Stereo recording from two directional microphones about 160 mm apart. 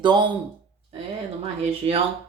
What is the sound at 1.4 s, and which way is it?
Speech, 40° right (ahead or behind).